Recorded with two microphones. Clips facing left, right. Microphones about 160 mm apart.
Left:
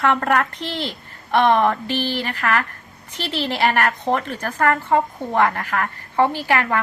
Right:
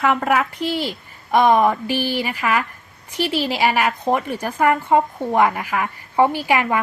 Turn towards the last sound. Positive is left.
turn(degrees=-15)  # may be behind; listen again after turning